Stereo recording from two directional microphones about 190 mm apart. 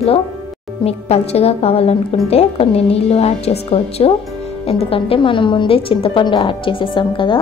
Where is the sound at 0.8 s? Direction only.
35° left (ahead or behind).